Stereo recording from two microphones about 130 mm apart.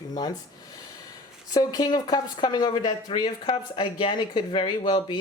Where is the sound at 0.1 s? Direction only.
30° left (ahead or behind).